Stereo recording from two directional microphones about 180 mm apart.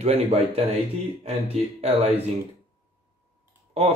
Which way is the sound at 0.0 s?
35° right (ahead or behind).